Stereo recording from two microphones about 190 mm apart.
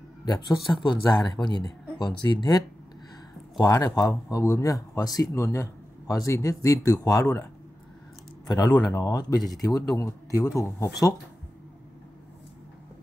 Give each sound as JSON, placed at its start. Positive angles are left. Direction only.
{"t": 0.2, "sound": "a man's voice", "side_deg": 20}
{"t": 8.5, "sound": "a man's voice", "side_deg": 20}